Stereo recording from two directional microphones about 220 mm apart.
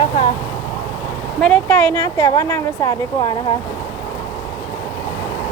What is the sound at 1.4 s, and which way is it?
Speech, 5° left (ahead or behind).